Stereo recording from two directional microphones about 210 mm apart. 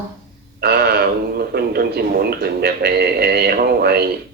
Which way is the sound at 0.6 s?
50° right (ahead or behind).